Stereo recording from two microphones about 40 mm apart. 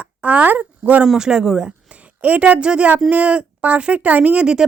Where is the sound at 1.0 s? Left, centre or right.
Centre.